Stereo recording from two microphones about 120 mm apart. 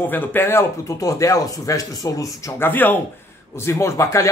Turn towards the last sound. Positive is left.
turn(degrees=25)  # may be behind; listen again after turning